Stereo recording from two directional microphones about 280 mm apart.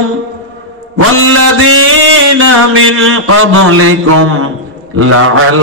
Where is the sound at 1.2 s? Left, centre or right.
Right.